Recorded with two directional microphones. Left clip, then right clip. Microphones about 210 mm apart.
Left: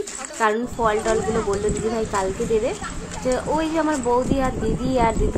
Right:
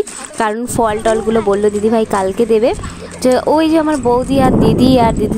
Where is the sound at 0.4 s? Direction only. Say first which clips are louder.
Right 6 dB; 50° right (ahead or behind).